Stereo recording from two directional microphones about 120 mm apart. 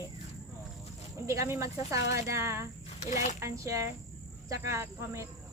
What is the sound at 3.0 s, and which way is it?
Speech, 65° left (ahead or behind).